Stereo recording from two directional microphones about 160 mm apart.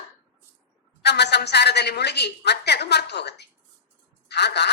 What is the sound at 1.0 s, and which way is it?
Speech, 90° left.